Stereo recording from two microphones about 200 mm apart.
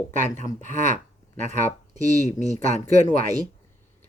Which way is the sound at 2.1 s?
35° left (ahead or behind).